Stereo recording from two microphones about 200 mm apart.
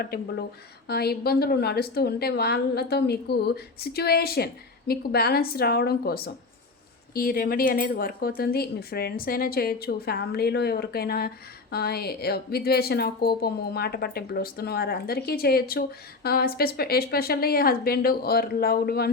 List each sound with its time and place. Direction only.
0.0 s speech: 50° left (ahead or behind)